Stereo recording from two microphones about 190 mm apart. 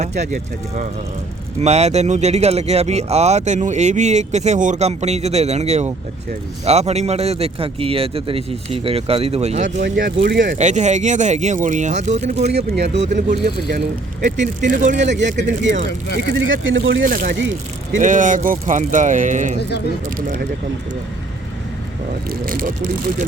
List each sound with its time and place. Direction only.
0.0 s speech: 35° right (ahead or behind)
10.0 s speech: 70° right (ahead or behind)
10.6 s speech: 40° right (ahead or behind)
12.5 s speech: 60° right (ahead or behind)
13.0 s speech: 40° right (ahead or behind)
14.3 s speech: 70° right (ahead or behind)
14.7 s speech: 40° right (ahead or behind)
15.0 s speech: 70° right (ahead or behind)
16.5 s speech: 80° right
17.1 s speech: 45° right (ahead or behind)
22.3 s speech: 45° right (ahead or behind)